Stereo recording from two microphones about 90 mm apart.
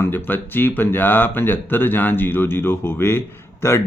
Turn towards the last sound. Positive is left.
turn(degrees=30)  # may be behind; listen again after turning